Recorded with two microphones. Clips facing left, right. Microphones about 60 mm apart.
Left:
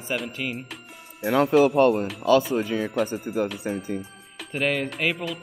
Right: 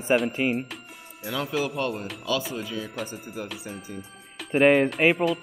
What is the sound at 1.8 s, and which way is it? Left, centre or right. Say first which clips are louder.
Speech: left 10 dB; left.